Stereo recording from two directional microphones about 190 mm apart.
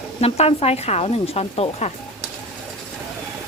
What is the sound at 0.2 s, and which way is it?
Speech, 30° left (ahead or behind).